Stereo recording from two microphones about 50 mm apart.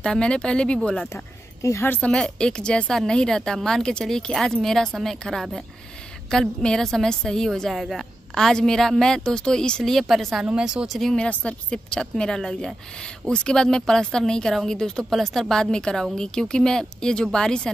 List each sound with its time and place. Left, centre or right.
0.0 s speech: centre
1.1 s a sound: left
2.1 s speech: centre
6.6 s speech: centre
7.7 s speech: centre
8.4 s speech: centre
10.6 s speech: centre
11.2 s speech: left
15.0 s speech: centre